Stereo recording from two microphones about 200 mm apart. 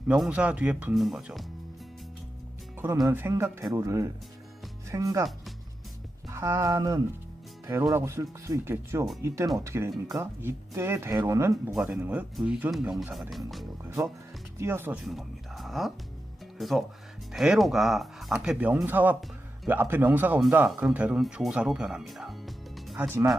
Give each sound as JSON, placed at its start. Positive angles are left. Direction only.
{"t": 0.1, "sound": "speech", "side_deg": -5}
{"t": 2.7, "sound": "speech", "side_deg": -10}
{"t": 6.3, "sound": "speech", "side_deg": -15}
{"t": 13.8, "sound": "speech", "side_deg": -15}
{"t": 15.0, "sound": "a sound", "side_deg": 0}
{"t": 16.6, "sound": "speech", "side_deg": 0}